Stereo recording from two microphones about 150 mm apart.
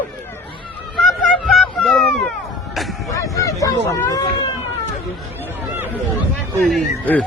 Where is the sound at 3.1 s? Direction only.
20° left (ahead or behind).